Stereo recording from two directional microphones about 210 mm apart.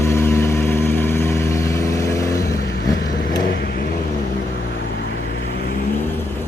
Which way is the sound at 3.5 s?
50° left (ahead or behind).